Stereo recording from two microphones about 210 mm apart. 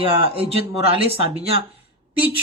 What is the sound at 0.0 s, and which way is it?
A man's voice, 25° right (ahead or behind).